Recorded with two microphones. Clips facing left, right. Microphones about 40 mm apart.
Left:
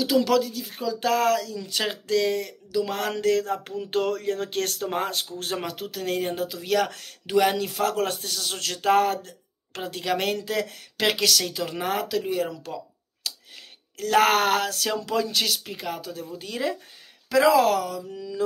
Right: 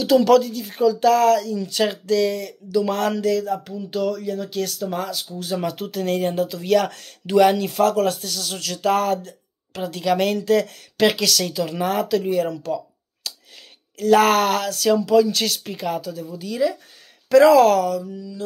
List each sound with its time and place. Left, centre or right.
0.0 s speech: centre
0.9 s speech: centre
3.2 s a sound: left
3.6 s speech: left
5.7 s speech: centre
7.9 s speech: centre
15.0 s speech: left
15.3 s speech: centre
16.0 s a sound: left
16.3 s speech: left
17.3 s speech: centre